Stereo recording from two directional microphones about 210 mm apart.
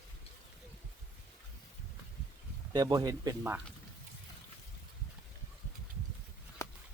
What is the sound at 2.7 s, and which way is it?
Speech, 15° right (ahead or behind).